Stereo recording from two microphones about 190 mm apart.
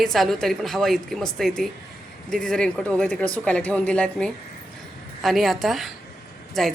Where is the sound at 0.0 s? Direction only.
Centre (ahead or behind).